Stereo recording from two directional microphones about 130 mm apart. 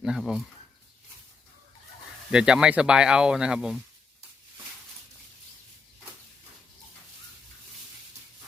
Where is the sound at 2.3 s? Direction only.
5° right (ahead or behind).